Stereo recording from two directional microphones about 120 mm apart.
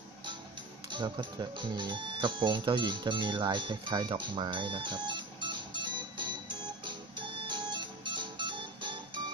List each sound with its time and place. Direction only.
0.8 s speech: 40° right (ahead or behind)
6.8 s music: 40° right (ahead or behind)